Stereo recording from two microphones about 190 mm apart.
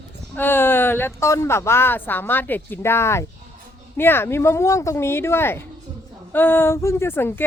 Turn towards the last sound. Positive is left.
turn(degrees=10)  # may be behind; listen again after turning